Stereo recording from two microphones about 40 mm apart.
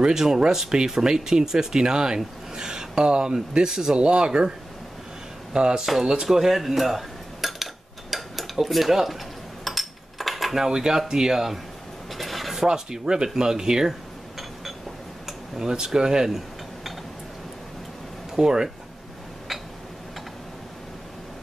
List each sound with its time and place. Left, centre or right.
0.0 s speech: centre
3.9 s speech: right
5.9 s speech: centre
6.2 s dishes: centre
9.7 s a sound: centre
10.6 s speech: centre
12.2 s a sound: centre
12.6 s speech: centre
15.2 s tick-tock: centre
15.7 s cutlery: centre
18.3 s speech: centre